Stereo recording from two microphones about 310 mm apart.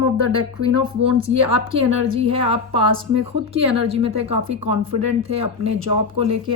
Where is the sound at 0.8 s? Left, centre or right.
Centre.